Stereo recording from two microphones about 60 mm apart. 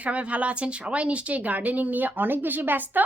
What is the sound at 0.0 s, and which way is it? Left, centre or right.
A woman's voice, right.